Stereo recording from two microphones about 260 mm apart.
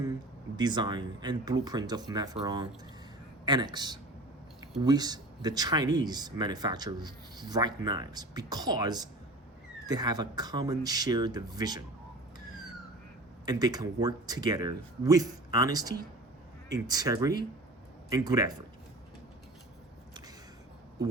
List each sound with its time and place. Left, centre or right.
0.0 s speech: centre
13.4 s speech: centre